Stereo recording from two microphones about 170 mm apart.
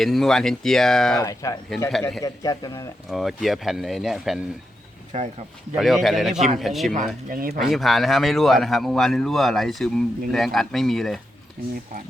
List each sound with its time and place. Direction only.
0.0 s speech: centre (ahead or behind)
1.2 s a man's voice: 20° left (ahead or behind)
1.9 s speech: centre (ahead or behind)
2.2 s a man's voice: 20° left (ahead or behind)
3.1 s speech: centre (ahead or behind)
5.1 s speech: 40° right (ahead or behind)
5.7 s speech: centre (ahead or behind)
6.3 s a man's voice: 45° right (ahead or behind)
6.6 s speech: centre (ahead or behind)
7.3 s speech: 55° right (ahead or behind)
7.7 s speech: centre (ahead or behind)
11.6 s speech: 60° right (ahead or behind)